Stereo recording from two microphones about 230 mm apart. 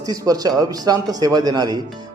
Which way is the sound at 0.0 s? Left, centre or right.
Centre.